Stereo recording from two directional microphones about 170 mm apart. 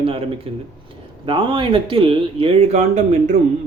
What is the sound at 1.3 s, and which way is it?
Speech, 30° right (ahead or behind).